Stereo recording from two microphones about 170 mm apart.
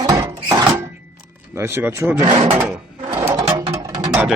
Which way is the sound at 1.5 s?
15° right (ahead or behind).